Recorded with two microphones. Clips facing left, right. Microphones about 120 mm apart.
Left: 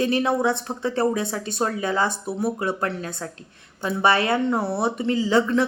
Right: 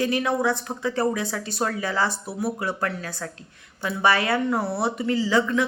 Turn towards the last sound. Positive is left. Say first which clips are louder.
# left 2 dB
turn(degrees=30)  # may be behind; listen again after turning